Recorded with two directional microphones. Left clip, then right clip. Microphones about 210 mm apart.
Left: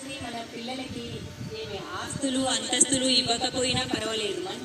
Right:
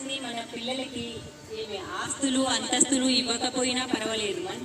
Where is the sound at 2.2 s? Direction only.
50° right (ahead or behind).